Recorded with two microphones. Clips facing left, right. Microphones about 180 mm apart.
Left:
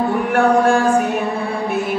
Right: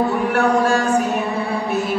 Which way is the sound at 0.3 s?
55° left (ahead or behind).